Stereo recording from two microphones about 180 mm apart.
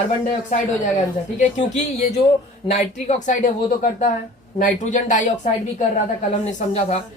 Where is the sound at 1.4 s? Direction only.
40° left (ahead or behind).